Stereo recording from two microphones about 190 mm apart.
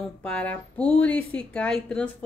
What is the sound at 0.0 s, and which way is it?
Speech, 5° left (ahead or behind).